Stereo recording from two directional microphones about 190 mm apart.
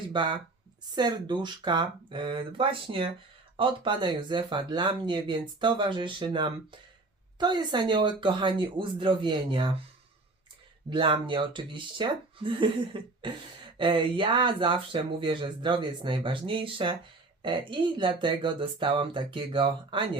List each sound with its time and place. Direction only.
0.1 s speech: 25° right (ahead or behind)
10.8 s speech: 25° right (ahead or behind)